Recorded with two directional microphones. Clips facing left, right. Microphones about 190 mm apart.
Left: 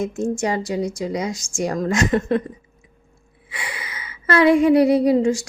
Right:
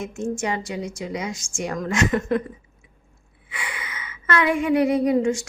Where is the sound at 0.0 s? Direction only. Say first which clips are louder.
Left 4 dB; 40° left (ahead or behind).